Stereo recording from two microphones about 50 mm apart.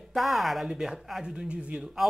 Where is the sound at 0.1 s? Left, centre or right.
Centre.